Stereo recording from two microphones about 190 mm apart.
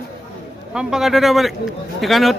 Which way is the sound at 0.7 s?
Centre (ahead or behind).